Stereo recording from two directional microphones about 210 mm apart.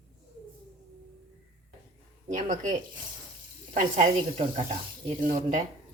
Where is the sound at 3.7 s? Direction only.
35° right (ahead or behind).